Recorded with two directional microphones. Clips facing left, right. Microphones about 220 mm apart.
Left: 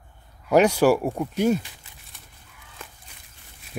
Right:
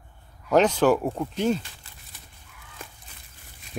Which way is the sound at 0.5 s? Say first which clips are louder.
Left 2 dB; 10° left (ahead or behind).